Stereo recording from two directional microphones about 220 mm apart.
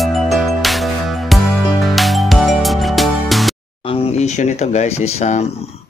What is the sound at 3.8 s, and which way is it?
Speech, 25° left (ahead or behind).